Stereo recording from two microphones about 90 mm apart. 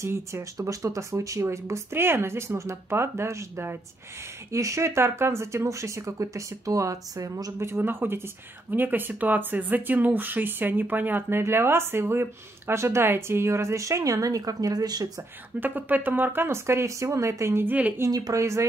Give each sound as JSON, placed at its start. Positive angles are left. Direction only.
{"t": 0.0, "sound": "speech", "side_deg": -30}
{"t": 7.6, "sound": "speech", "side_deg": -25}
{"t": 15.6, "sound": "speech", "side_deg": -20}
{"t": 17.6, "sound": "speech", "side_deg": -20}
{"t": 18.1, "sound": "speech", "side_deg": -40}